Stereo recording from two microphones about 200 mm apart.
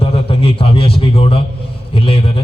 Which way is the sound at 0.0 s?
30° left (ahead or behind).